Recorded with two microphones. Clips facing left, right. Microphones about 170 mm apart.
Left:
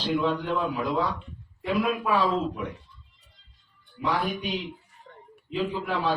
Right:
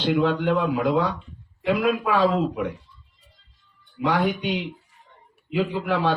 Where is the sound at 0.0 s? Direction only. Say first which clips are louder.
Right 5 dB; 70° right (ahead or behind).